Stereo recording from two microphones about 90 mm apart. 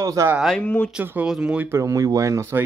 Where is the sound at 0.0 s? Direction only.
40° right (ahead or behind).